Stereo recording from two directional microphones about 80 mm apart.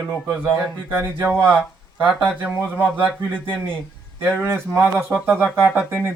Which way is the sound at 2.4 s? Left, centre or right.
Right.